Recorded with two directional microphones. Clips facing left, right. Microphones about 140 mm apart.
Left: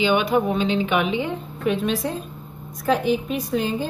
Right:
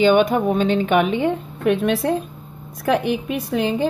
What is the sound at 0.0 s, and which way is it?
A woman's voice, 50° right (ahead or behind).